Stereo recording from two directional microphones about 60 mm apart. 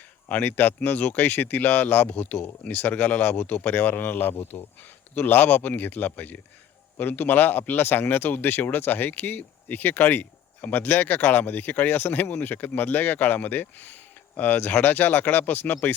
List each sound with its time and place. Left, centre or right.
0.3 s speech: left